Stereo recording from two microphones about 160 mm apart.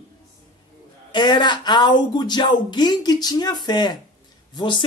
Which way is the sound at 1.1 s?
30° left (ahead or behind).